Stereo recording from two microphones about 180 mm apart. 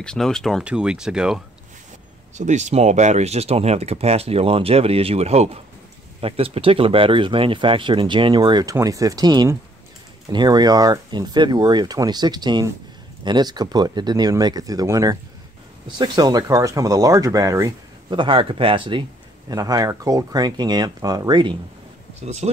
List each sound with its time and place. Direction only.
0.0 s speech: 5° left (ahead or behind)
2.3 s speech: 40° right (ahead or behind); by 21.5 s 25° right (ahead or behind)
22.2 s speech: 35° right (ahead or behind)